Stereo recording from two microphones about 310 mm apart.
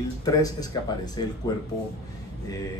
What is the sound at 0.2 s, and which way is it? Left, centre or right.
Speech, centre.